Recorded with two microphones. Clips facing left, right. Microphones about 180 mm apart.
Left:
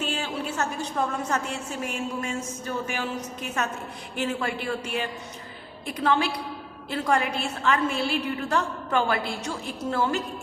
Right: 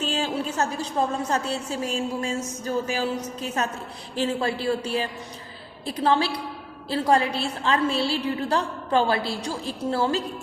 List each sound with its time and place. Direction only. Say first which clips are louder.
0.0 s a sound: right 3 dB; 40° right (ahead or behind)
0.5 s a woman's voice: right 3 dB; 35° right (ahead or behind)
4.1 s a woman's voice: right 3 dB; 30° right (ahead or behind)